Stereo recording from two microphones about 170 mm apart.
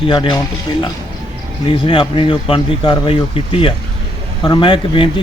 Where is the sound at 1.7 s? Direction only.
30° left (ahead or behind).